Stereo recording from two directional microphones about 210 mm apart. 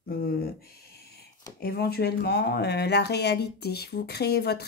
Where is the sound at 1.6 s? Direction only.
50° left (ahead or behind).